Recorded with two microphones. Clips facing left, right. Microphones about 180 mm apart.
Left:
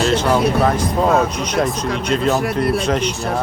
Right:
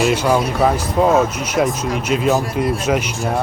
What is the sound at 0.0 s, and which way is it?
Speech, 10° right (ahead or behind).